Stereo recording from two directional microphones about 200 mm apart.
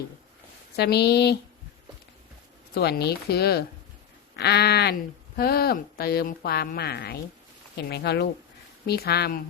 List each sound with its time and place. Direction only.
0.8 s speech: 55° left (ahead or behind)
2.7 s speech: 55° left (ahead or behind)